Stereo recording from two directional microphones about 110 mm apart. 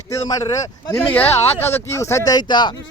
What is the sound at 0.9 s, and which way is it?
Speech, 15° left (ahead or behind).